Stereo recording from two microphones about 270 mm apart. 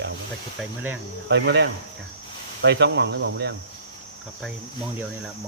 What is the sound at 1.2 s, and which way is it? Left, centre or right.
Speech, right.